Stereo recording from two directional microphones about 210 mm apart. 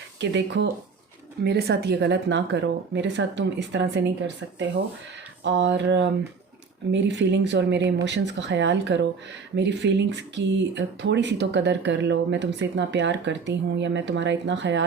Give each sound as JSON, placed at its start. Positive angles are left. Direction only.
{"t": 0.2, "sound": "speech", "side_deg": -55}